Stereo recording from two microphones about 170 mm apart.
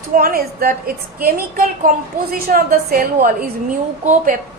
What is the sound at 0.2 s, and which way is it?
A woman's voice, 60° right (ahead or behind).